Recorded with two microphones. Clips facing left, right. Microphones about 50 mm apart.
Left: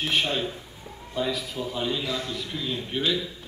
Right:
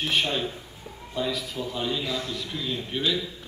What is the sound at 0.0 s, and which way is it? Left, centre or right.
A man's voice, centre.